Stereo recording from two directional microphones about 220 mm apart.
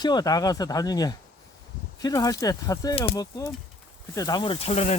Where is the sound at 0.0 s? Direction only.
20° left (ahead or behind).